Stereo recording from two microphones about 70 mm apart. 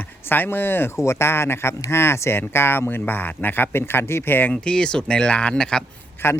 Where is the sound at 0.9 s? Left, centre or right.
Left.